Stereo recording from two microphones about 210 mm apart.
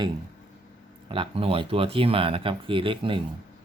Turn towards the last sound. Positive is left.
turn(degrees=-25)  # may be behind; listen again after turning